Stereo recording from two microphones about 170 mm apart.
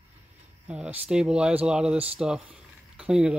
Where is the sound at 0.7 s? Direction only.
5° right (ahead or behind).